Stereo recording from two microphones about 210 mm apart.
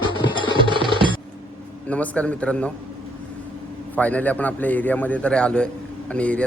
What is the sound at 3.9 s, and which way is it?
A man's voice, 5° left (ahead or behind).